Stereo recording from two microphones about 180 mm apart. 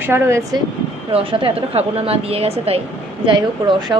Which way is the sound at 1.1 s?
30° right (ahead or behind).